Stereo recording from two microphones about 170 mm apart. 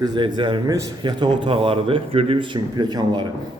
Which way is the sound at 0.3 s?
30° right (ahead or behind).